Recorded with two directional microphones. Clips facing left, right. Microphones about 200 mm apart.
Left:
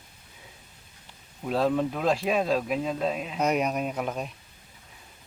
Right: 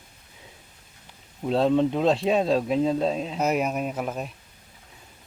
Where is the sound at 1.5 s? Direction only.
25° right (ahead or behind).